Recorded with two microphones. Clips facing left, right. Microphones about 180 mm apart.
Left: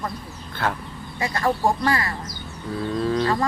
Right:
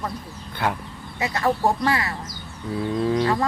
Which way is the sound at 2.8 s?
15° right (ahead or behind).